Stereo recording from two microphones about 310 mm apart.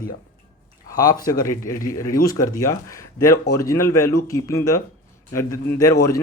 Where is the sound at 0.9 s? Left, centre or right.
Centre.